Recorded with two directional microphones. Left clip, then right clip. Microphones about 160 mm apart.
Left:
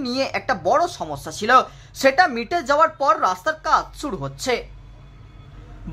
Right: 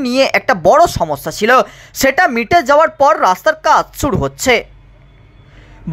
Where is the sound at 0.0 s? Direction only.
40° right (ahead or behind).